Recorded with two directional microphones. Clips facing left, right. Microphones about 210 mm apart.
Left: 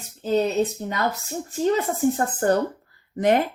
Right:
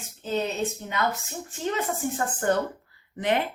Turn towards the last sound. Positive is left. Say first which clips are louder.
# left 6 dB
turn(degrees=45)  # may be behind; listen again after turning